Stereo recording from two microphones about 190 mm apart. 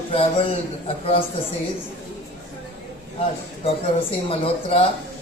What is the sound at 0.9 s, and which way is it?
Speech, 30° left (ahead or behind).